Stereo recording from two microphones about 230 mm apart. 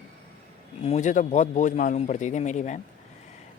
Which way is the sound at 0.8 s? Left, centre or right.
Left.